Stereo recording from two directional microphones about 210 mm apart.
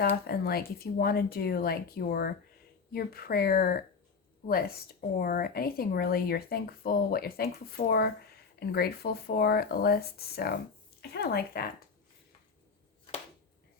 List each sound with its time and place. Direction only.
0.0 s speech: 45° left (ahead or behind)